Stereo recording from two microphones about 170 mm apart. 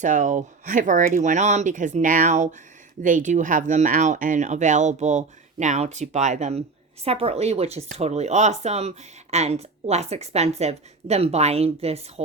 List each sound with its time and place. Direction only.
0.0 s a woman's voice: 45° right (ahead or behind)